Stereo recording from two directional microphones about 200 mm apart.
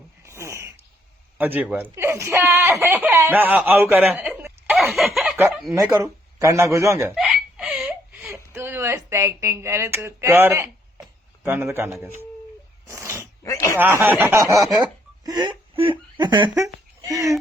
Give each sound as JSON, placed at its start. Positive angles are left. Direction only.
{"t": 0.3, "sound": "a sound", "side_deg": -15}
{"t": 1.4, "sound": "speech", "side_deg": -10}
{"t": 5.7, "sound": "a man's voice", "side_deg": -15}
{"t": 7.2, "sound": "a sound", "side_deg": -5}
{"t": 11.4, "sound": "a man's voice", "side_deg": -10}
{"t": 12.9, "sound": "dog", "side_deg": -15}
{"t": 13.4, "sound": "speech", "side_deg": 15}
{"t": 13.7, "sound": "a man's voice", "side_deg": -10}